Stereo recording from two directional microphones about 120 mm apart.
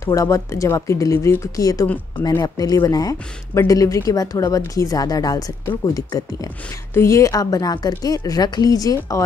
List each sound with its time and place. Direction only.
0.0 s speech: 25° left (ahead or behind)
6.9 s a woman's voice: 25° left (ahead or behind)